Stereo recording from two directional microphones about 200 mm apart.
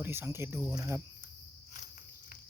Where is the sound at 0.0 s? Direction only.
10° right (ahead or behind).